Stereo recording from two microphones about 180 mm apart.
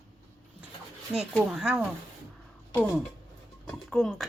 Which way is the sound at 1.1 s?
5° right (ahead or behind).